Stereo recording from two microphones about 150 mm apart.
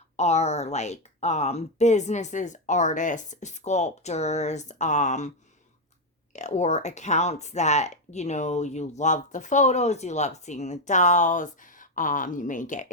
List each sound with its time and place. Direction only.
0.2 s speech: 45° left (ahead or behind)
6.3 s speech: 50° left (ahead or behind)